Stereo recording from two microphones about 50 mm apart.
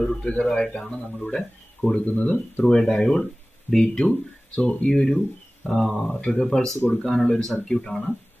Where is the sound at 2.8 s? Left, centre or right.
Centre.